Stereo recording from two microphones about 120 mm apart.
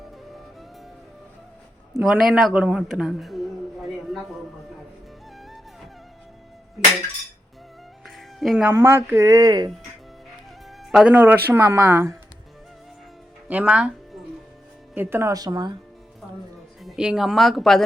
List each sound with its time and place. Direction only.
2.0 s a woman's voice: 5° right (ahead or behind)
2.5 s a sound: 10° right (ahead or behind)
8.0 s music: centre (ahead or behind)
8.7 s speech: 20° right (ahead or behind); by 9.7 s 35° right (ahead or behind)
10.9 s speech: 10° right (ahead or behind)
13.5 s speech: 10° right (ahead or behind); by 15.7 s 35° right (ahead or behind)
16.8 s a woman's voice: 5° right (ahead or behind)